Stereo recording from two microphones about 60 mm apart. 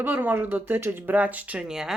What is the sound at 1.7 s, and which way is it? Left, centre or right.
Speech, centre.